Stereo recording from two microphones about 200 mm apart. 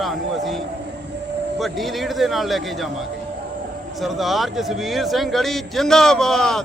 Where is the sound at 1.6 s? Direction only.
Centre (ahead or behind).